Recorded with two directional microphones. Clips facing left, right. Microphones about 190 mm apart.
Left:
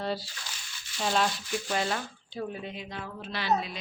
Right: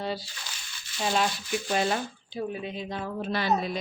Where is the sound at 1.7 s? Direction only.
15° right (ahead or behind).